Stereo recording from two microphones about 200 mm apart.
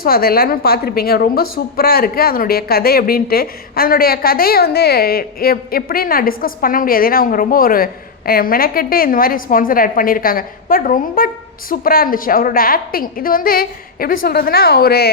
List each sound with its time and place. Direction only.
0.0 s a woman's voice: 50° left (ahead or behind)